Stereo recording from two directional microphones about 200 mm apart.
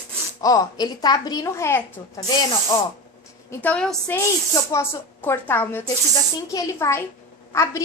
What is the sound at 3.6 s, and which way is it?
A woman's voice, 5° left (ahead or behind).